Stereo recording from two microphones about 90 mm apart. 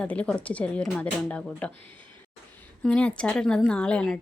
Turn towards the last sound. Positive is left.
turn(degrees=10)  # may be behind; listen again after turning